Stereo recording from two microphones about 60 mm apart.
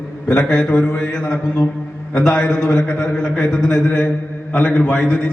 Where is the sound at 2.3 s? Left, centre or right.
Centre.